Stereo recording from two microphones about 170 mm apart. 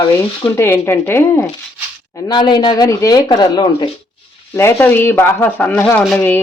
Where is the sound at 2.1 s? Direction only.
20° left (ahead or behind).